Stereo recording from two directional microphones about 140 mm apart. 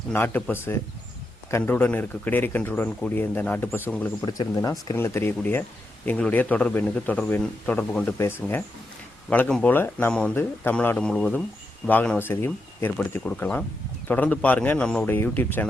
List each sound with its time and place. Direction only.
0.1 s a man's voice: 15° left (ahead or behind)
4.3 s speech: 25° left (ahead or behind)
4.9 s a man's voice: 15° left (ahead or behind)